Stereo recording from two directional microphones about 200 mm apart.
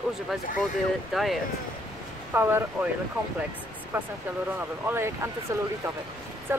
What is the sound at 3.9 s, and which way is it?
Speech, 10° right (ahead or behind).